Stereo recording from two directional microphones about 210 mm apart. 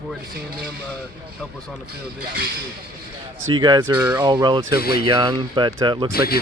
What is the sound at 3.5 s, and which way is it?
Speech, 20° right (ahead or behind).